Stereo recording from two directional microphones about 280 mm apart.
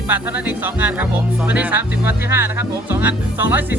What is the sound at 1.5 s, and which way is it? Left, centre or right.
Music, centre.